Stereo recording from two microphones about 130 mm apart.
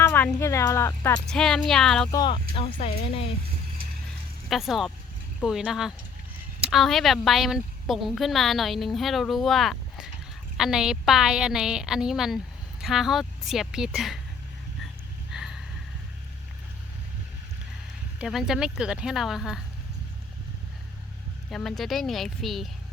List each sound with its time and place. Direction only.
0.0 s a sound: 15° left (ahead or behind)
0.3 s speech: 20° left (ahead or behind)
1.3 s a woman's voice: 5° left (ahead or behind)
2.1 s speech: 40° left (ahead or behind)
4.4 s a woman's voice: centre (ahead or behind)
15.3 s a sound: 5° right (ahead or behind)
18.2 s a woman's voice: 5° right (ahead or behind)
21.5 s a woman's voice: centre (ahead or behind)